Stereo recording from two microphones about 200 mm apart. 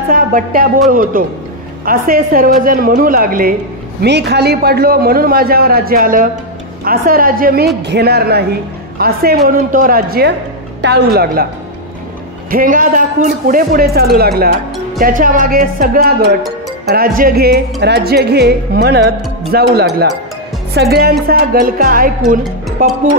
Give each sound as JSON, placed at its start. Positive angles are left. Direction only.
{"t": 0.1, "sound": "a man's voice", "side_deg": -45}
{"t": 4.0, "sound": "a man's voice", "side_deg": -55}
{"t": 12.4, "sound": "a man's voice", "side_deg": -45}
{"t": 20.9, "sound": "a man's voice", "side_deg": -50}